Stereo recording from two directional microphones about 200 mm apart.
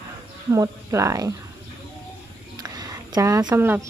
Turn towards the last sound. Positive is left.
turn(degrees=-10)  # may be behind; listen again after turning